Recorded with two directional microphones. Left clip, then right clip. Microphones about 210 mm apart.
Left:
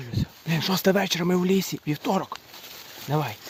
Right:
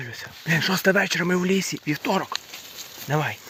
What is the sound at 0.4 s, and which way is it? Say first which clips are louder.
Speech: right 3 dB; 15° left (ahead or behind).